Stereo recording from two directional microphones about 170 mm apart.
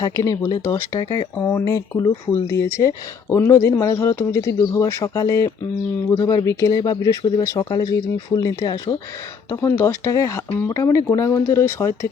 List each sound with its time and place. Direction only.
0.0 s speech: 20° left (ahead or behind)